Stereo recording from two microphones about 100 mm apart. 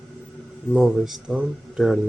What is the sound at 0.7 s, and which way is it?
Speech, centre (ahead or behind).